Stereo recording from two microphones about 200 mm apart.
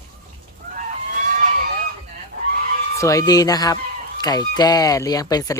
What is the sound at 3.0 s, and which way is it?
A woman's voice, 15° left (ahead or behind).